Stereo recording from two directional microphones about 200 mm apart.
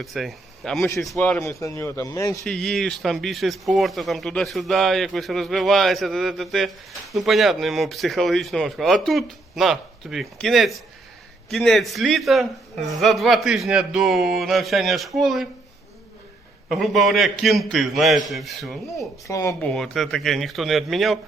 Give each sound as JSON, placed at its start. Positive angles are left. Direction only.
{"t": 0.0, "sound": "a man's voice", "side_deg": 0}
{"t": 2.4, "sound": "a man's voice", "side_deg": 0}
{"t": 16.7, "sound": "a man's voice", "side_deg": 0}
{"t": 19.3, "sound": "a man's voice", "side_deg": 15}
{"t": 19.5, "sound": "a man's voice", "side_deg": 5}